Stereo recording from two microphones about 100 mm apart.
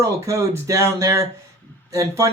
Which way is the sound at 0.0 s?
30° right (ahead or behind).